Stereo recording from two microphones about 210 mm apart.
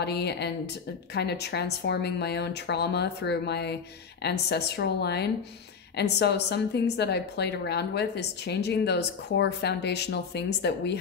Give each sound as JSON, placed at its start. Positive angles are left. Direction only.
{"t": 0.0, "sound": "a woman's voice", "side_deg": 50}